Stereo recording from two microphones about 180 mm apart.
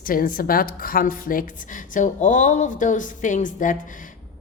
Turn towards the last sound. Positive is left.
turn(degrees=45)  # may be behind; listen again after turning